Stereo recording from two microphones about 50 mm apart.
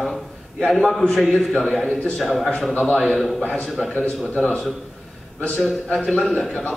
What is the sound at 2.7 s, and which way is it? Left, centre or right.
Speech, left.